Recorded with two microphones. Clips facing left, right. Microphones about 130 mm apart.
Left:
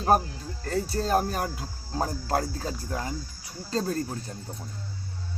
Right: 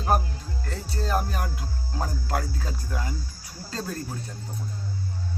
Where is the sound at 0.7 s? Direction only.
40° left (ahead or behind).